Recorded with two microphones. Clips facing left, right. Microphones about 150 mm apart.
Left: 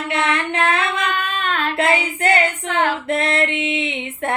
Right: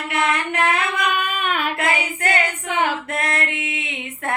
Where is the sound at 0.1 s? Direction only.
25° left (ahead or behind).